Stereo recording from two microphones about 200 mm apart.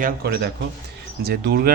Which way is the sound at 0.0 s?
50° right (ahead or behind).